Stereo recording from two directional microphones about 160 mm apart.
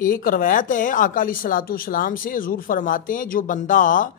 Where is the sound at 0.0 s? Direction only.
60° left (ahead or behind).